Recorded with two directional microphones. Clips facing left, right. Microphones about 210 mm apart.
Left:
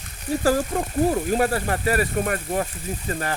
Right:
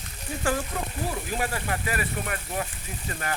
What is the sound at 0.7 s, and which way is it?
Speech, 40° left (ahead or behind).